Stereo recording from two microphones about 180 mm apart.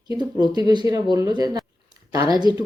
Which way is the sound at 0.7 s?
20° right (ahead or behind).